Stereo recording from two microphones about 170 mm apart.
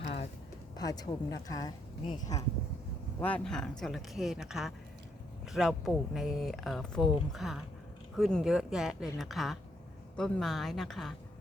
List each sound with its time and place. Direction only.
0.0 s a sound: 40° left (ahead or behind)
0.8 s speech: 20° left (ahead or behind)
3.2 s speech: 10° left (ahead or behind)